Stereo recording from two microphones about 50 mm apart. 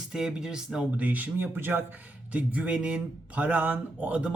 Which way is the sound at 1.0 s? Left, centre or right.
Right.